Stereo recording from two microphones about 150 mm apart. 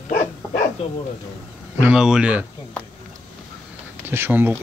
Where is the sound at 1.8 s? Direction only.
5° right (ahead or behind).